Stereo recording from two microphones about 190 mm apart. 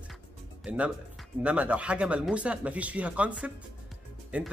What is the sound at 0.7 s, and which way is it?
Speech, 5° right (ahead or behind).